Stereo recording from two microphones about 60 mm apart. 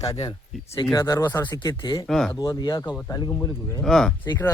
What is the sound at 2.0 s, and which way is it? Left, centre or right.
Speech, centre.